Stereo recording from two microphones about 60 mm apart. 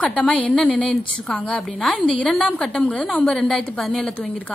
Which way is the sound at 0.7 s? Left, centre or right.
Centre.